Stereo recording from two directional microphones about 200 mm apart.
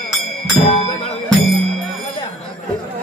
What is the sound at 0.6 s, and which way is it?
Music, 35° left (ahead or behind).